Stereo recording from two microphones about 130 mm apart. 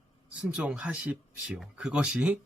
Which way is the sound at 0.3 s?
5° right (ahead or behind).